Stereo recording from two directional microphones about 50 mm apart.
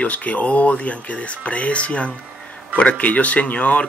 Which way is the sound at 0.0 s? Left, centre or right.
Left.